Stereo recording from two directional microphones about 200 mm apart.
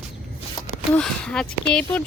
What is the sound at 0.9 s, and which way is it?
A woman's voice, 5° left (ahead or behind).